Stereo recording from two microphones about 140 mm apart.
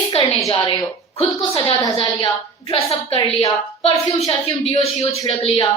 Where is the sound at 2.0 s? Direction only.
35° left (ahead or behind).